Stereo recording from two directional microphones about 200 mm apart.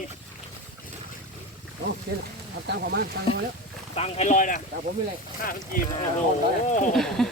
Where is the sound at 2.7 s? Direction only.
55° right (ahead or behind).